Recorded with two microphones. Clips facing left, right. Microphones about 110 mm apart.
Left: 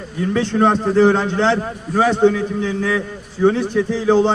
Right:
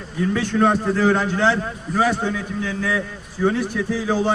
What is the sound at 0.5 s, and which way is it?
A man's voice, 25° left (ahead or behind).